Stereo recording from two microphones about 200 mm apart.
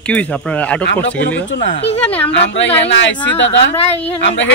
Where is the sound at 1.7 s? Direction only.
30° left (ahead or behind).